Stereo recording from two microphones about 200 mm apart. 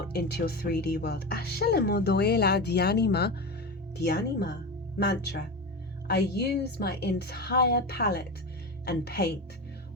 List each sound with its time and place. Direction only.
0.1 s speech: 50° left (ahead or behind)